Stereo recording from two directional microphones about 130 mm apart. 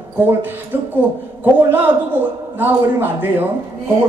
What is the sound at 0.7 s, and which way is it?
Speech, 15° right (ahead or behind).